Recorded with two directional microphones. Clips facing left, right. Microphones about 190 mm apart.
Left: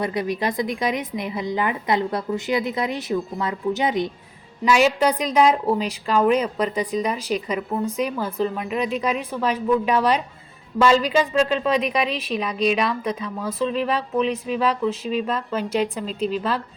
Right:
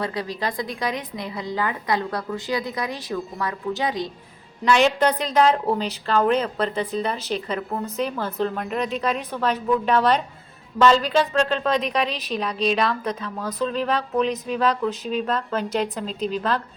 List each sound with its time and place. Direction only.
0.0 s a woman's voice: 20° left (ahead or behind)
4.6 s speech: 5° left (ahead or behind)